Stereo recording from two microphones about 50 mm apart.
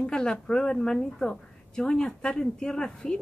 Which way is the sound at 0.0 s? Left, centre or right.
Centre.